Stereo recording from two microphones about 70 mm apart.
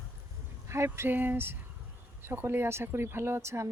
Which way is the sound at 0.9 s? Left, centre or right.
Right.